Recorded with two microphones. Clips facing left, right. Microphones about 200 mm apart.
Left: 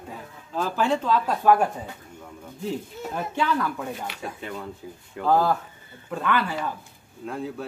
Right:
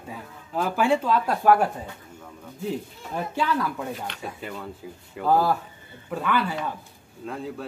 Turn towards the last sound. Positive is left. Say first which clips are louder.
# left 1 dB
turn(degrees=0)  # may be behind; listen again after turning